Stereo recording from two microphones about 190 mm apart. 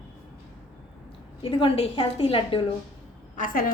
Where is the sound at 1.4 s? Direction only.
30° left (ahead or behind).